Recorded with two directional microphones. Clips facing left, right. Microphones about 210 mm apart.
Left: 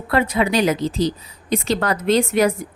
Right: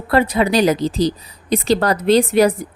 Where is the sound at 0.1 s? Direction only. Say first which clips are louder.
Right 3 dB; 35° right (ahead or behind).